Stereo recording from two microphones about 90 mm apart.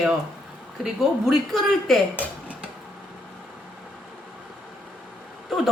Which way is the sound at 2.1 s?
15° left (ahead or behind).